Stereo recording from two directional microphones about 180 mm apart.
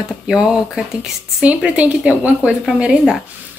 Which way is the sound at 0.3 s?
5° right (ahead or behind).